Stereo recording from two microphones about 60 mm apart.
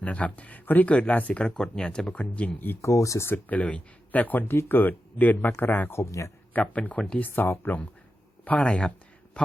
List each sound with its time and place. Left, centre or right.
0.0 s speech: left
2.8 s speech: left
3.2 s speech: left
6.1 s speech: left
6.5 s speech: left
7.2 s speech: left
8.4 s speech: centre